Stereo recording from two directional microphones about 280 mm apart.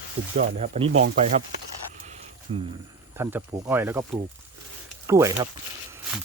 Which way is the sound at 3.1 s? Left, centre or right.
Centre.